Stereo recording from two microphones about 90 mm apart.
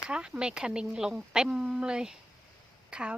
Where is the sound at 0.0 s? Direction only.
10° right (ahead or behind).